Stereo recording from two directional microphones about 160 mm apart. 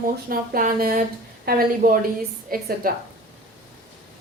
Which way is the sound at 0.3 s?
65° right (ahead or behind).